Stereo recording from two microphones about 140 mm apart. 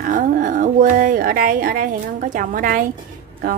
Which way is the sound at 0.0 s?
80° right.